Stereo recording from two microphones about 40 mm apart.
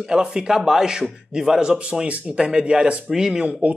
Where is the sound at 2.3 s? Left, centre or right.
Right.